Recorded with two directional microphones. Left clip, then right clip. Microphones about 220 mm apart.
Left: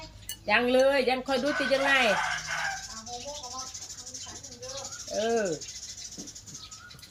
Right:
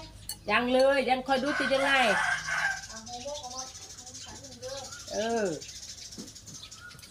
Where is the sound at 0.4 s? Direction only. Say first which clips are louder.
Left 1 dB; 15° left (ahead or behind).